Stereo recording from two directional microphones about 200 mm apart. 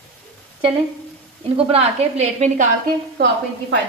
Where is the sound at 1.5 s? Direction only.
30° right (ahead or behind).